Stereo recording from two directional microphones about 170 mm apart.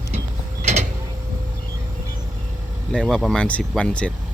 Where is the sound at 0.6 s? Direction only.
40° right (ahead or behind).